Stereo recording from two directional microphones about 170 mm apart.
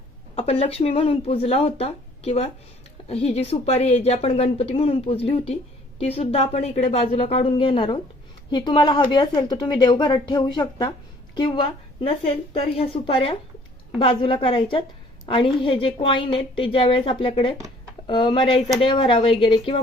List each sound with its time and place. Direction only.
0.3 s a woman's voice: 35° left (ahead or behind)